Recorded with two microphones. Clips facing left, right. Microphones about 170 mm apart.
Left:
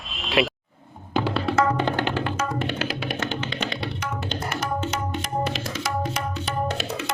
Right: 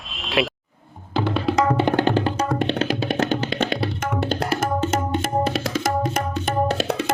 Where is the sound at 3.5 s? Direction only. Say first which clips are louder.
Right 6 dB; 55° right (ahead or behind).